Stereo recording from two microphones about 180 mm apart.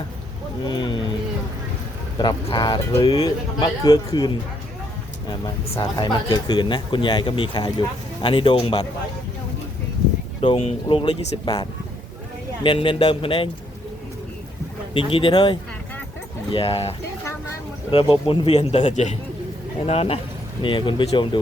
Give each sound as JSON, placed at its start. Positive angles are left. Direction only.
{"t": 0.6, "sound": "speech", "side_deg": 25}
{"t": 2.1, "sound": "speech", "side_deg": 25}
{"t": 5.3, "sound": "speech", "side_deg": 25}
{"t": 10.4, "sound": "speech", "side_deg": 30}
{"t": 14.9, "sound": "speech", "side_deg": 30}
{"t": 17.9, "sound": "speech", "side_deg": 30}